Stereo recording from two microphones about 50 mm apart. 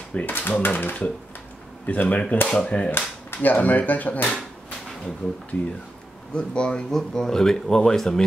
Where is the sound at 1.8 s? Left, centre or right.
Left.